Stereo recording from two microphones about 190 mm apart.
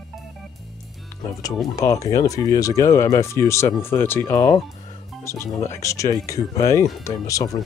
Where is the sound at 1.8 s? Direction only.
15° left (ahead or behind).